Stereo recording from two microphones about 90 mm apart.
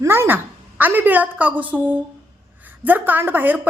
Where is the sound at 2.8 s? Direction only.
20° right (ahead or behind).